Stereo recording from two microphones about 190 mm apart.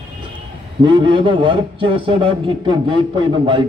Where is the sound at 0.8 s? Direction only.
25° right (ahead or behind).